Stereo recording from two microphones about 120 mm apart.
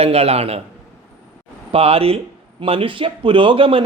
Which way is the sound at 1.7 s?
55° right (ahead or behind).